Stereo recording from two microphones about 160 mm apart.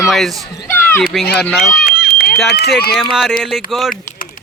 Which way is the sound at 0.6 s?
15° left (ahead or behind).